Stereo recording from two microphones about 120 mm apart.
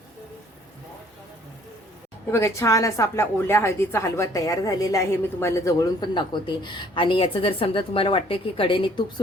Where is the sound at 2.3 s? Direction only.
25° left (ahead or behind).